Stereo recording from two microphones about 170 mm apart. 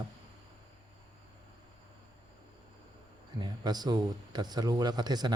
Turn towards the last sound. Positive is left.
turn(degrees=-25)  # may be behind; listen again after turning